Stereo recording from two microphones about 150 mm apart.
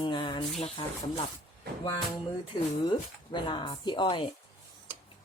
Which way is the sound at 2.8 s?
30° left (ahead or behind).